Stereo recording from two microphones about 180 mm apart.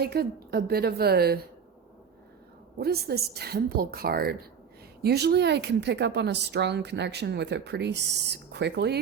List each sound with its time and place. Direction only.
0.0 s a woman's voice: 60° right (ahead or behind)
2.7 s a woman's voice: 60° right (ahead or behind)